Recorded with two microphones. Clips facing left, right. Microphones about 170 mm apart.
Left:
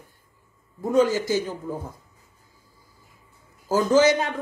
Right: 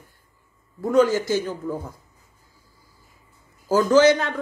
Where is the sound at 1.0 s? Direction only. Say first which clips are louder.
Right 1 dB; 20° right (ahead or behind).